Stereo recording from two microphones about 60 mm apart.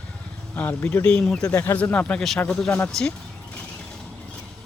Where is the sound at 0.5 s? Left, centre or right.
Left.